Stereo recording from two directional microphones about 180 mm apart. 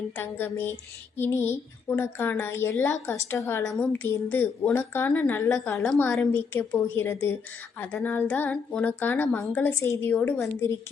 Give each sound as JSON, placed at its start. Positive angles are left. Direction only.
{"t": 0.2, "sound": "a woman's voice", "side_deg": 10}
{"t": 5.7, "sound": "a woman's voice", "side_deg": 0}